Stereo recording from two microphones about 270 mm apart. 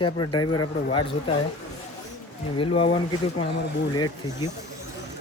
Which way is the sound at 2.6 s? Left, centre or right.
Left.